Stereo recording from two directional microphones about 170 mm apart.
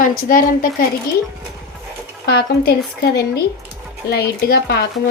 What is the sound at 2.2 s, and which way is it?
Speech, 70° left (ahead or behind).